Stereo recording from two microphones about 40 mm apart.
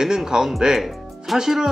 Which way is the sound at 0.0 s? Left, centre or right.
Centre.